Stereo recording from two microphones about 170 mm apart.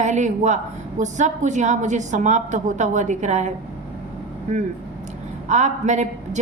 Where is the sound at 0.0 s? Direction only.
45° right (ahead or behind).